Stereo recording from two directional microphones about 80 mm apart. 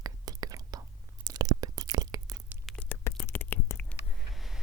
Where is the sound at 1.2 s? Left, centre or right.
Right.